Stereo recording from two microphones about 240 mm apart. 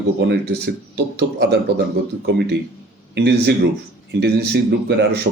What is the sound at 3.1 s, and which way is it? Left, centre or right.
A man's voice, right.